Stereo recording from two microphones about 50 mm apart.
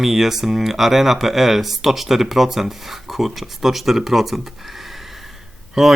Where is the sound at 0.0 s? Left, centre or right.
Centre.